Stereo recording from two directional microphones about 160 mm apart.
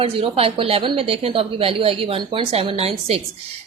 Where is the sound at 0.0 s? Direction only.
35° right (ahead or behind).